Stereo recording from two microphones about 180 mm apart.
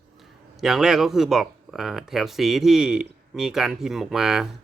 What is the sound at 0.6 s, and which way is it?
Speech, centre (ahead or behind).